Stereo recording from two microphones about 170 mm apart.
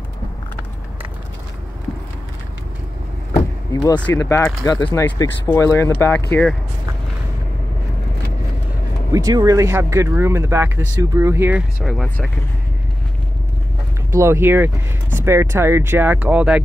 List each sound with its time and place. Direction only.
3.7 s speech: 20° left (ahead or behind)
9.1 s speech: 20° right (ahead or behind)
11.8 s speech: centre (ahead or behind)
14.1 s speech: 15° right (ahead or behind)